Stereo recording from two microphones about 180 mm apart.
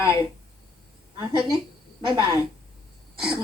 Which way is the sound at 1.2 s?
25° right (ahead or behind).